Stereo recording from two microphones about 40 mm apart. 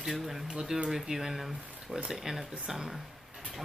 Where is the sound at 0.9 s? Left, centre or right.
Centre.